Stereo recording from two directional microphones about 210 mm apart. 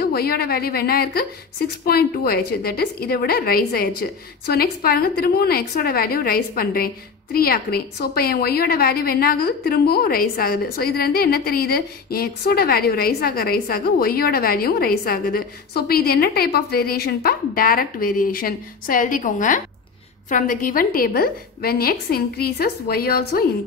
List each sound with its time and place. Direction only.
0.0 s a woman's voice: 45° left (ahead or behind)